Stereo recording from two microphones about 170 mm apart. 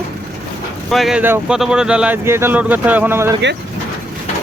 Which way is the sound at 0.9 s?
Centre (ahead or behind).